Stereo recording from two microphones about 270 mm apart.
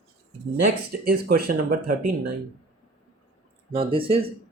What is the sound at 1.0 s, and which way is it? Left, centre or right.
Speech, right.